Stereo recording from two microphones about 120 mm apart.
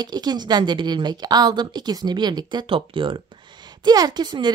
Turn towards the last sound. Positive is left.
turn(degrees=-35)  # may be behind; listen again after turning